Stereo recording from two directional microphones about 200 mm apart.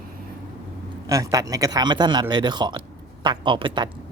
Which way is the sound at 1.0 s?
15° right (ahead or behind).